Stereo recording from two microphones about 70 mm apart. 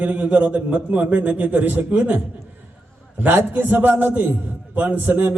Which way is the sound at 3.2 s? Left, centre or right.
Right.